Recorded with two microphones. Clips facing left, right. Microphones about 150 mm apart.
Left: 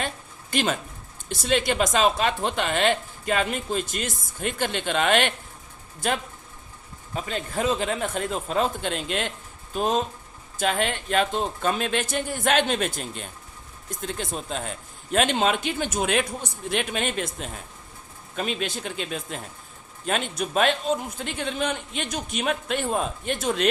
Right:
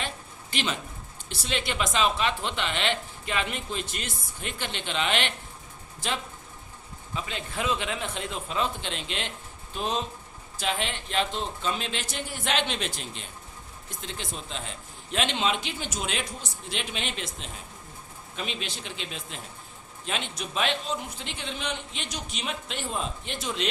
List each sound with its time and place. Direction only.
0.5 s a woman's voice: 45° left (ahead or behind)